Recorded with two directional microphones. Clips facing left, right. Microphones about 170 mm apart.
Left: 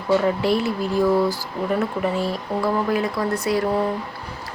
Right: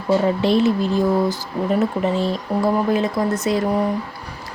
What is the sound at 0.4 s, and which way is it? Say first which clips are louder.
A woman's voice: right 4 dB; 20° right (ahead or behind).